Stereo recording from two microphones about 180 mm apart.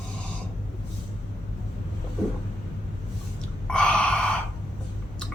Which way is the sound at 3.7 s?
5° left (ahead or behind).